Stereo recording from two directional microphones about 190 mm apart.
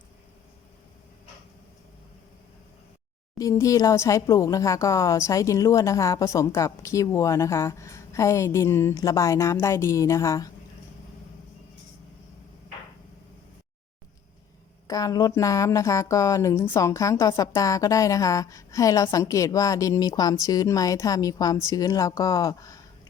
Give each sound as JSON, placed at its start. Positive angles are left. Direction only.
{"t": 3.3, "sound": "speech", "side_deg": 15}
{"t": 14.8, "sound": "speech", "side_deg": 20}